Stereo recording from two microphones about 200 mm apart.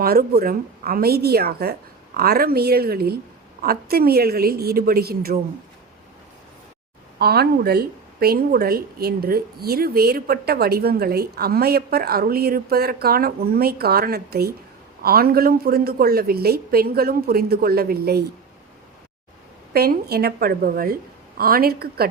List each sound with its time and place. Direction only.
0.0 s speech: 50° right (ahead or behind)
7.2 s speech: 50° right (ahead or behind)
19.7 s speech: 50° right (ahead or behind)